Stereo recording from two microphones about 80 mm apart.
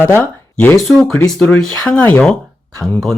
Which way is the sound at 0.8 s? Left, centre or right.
Centre.